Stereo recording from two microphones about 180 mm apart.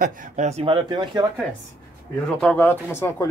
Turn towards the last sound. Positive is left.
turn(degrees=15)  # may be behind; listen again after turning